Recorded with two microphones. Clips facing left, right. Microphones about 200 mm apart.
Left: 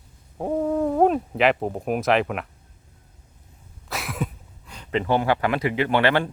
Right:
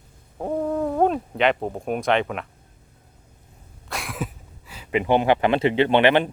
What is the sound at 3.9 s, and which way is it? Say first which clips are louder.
Speech: left 1 dB; centre (ahead or behind).